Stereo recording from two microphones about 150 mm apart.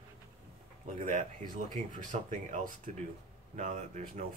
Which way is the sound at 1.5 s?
55° right (ahead or behind).